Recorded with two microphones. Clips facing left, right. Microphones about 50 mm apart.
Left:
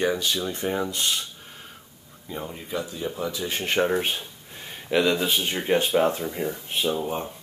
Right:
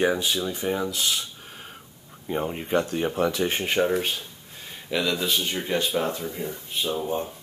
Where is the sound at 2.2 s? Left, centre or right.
Right.